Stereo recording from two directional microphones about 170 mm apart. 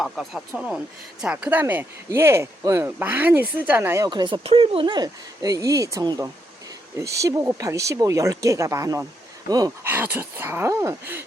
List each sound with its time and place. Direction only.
0.0 s speech: centre (ahead or behind); by 9.7 s 20° right (ahead or behind)
9.8 s speech: 10° right (ahead or behind)